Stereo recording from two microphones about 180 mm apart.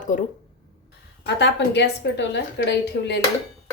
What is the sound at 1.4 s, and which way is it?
A woman's voice, 70° left (ahead or behind).